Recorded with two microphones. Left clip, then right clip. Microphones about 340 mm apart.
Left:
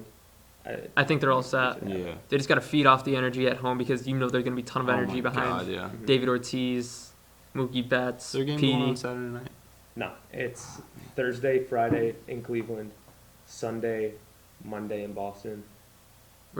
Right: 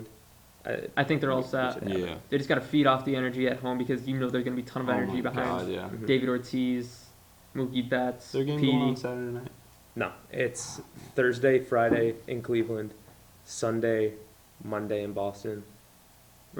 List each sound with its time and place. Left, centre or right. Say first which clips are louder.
0.6 s speech: right 4 dB; right
0.9 s speech: left 4 dB; left
1.9 s speech: right 2 dB; centre
2.3 s speech: left 3 dB; left
5.3 s speech: left 2 dB; centre
6.1 s speech: left 3 dB; left
8.3 s speech: left 1 dB; centre
10.0 s speech: right 3 dB; right